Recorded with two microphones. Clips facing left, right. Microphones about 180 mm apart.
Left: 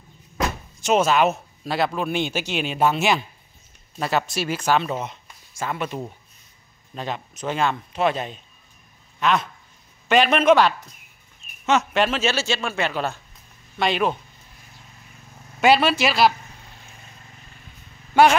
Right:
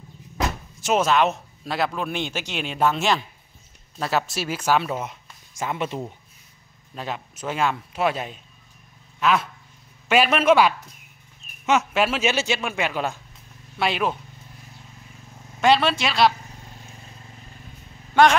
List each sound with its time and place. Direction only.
0.4 s door: centre (ahead or behind)
2.0 s speech: 5° left (ahead or behind)
4.0 s speech: 5° right (ahead or behind)
5.5 s speech: 20° right (ahead or behind)
7.0 s speech: 5° right (ahead or behind)
15.6 s speech: 5° left (ahead or behind)
18.1 s speech: 10° left (ahead or behind)